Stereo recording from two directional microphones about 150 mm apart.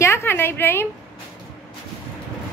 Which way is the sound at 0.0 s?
15° left (ahead or behind).